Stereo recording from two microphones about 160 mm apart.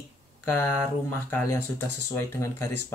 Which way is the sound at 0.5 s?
10° left (ahead or behind).